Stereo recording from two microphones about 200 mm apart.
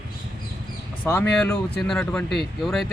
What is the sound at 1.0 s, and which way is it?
Speech, 10° left (ahead or behind).